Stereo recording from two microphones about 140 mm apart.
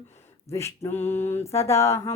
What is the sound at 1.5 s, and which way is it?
Speech, 20° left (ahead or behind).